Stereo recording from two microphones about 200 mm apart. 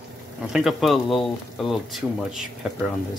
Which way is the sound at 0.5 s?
Centre (ahead or behind).